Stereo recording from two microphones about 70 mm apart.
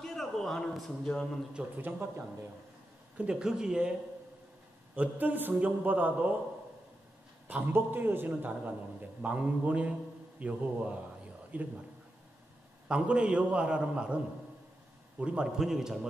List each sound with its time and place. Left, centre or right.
0.0 s a man's voice: centre
1.8 s a man's voice: right
3.2 s a man's voice: centre
4.9 s a man's voice: right
7.4 s a man's voice: right
12.8 s a man's voice: centre